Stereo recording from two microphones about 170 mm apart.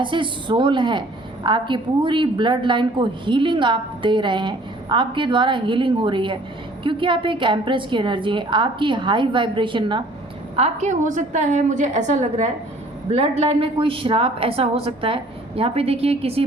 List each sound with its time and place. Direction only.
0.0 s a woman's voice: 30° right (ahead or behind)
10.5 s a woman's voice: 40° right (ahead or behind)